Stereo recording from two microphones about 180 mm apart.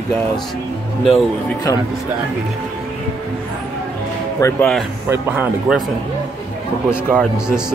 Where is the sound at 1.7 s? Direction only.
20° left (ahead or behind).